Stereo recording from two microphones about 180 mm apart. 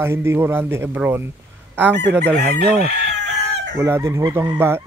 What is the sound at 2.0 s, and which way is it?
Chicken, 70° right (ahead or behind).